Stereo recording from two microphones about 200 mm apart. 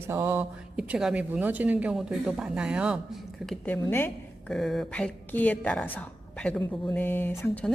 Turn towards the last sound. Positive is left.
turn(degrees=10)  # may be behind; listen again after turning